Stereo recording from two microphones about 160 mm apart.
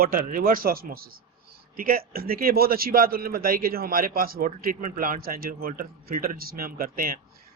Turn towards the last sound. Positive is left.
turn(degrees=-60)  # may be behind; listen again after turning